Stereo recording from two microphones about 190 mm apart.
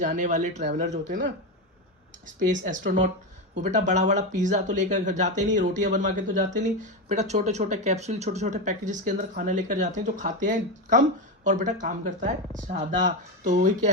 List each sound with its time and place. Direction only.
0.0 s speech: 40° right (ahead or behind)
2.2 s speech: 45° right (ahead or behind)